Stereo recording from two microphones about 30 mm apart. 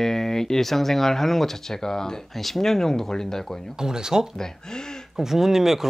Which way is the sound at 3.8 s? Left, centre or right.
Right.